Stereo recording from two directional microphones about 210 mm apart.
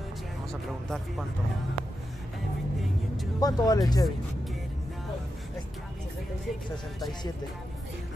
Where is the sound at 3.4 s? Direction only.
20° left (ahead or behind).